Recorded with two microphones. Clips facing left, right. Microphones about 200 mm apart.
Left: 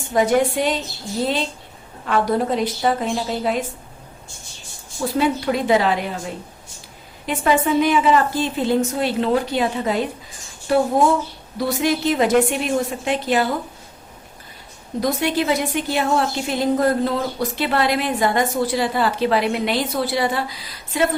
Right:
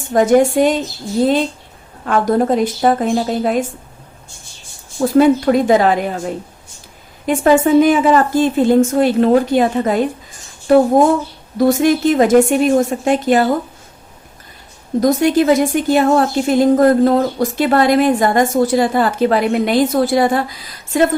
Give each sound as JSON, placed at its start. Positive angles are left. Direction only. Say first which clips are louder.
{"t": 0.1, "sound": "a woman's voice", "louder": "right 6 dB", "side_deg": -45}
{"t": 2.0, "sound": "a woman's voice", "louder": "right 5 dB", "side_deg": -45}
{"t": 4.9, "sound": "a woman's voice", "louder": "right 9 dB", "side_deg": -50}
{"t": 15.0, "sound": "a woman's voice", "louder": "right 8 dB", "side_deg": -45}